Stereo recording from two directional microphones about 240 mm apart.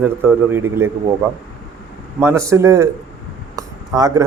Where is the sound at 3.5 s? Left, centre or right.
Centre.